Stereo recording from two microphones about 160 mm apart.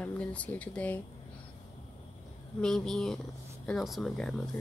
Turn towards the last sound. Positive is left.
turn(degrees=5)  # may be behind; listen again after turning